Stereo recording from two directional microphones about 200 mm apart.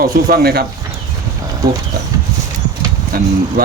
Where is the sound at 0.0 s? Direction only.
50° right (ahead or behind).